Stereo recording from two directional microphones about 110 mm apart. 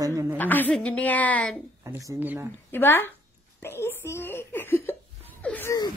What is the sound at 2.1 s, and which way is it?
Speech, 15° right (ahead or behind).